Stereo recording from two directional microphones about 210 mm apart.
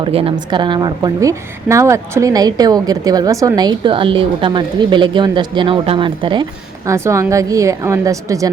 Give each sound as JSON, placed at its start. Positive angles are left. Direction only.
{"t": 0.0, "sound": "a woman's voice", "side_deg": -25}